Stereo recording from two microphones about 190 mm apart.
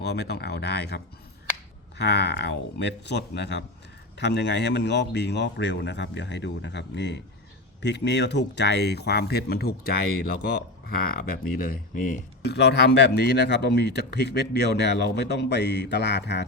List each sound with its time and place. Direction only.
0.0 s speech: 60° left (ahead or behind)
12.4 s speech: 60° left (ahead or behind)